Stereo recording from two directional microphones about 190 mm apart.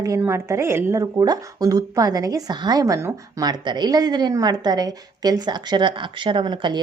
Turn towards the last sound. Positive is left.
turn(degrees=-25)  # may be behind; listen again after turning